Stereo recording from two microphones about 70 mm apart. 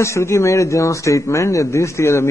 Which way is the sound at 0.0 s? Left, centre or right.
Left.